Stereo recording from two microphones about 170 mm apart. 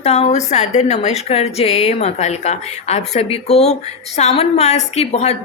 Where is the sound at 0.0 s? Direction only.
35° left (ahead or behind).